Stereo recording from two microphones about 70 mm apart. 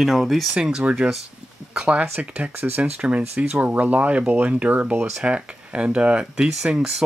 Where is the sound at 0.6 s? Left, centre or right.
Centre.